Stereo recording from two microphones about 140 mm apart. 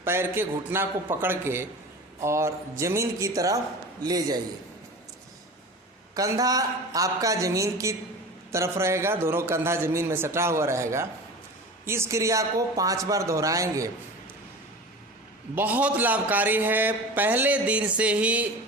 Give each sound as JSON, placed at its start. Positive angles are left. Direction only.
{"t": 0.0, "sound": "a man's voice", "side_deg": -15}
{"t": 6.1, "sound": "a man's voice", "side_deg": -25}
{"t": 15.5, "sound": "a man's voice", "side_deg": -10}